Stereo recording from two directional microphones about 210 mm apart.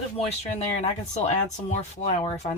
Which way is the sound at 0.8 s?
35° left (ahead or behind).